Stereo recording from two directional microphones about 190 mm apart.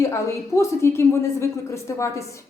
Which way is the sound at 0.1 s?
15° left (ahead or behind).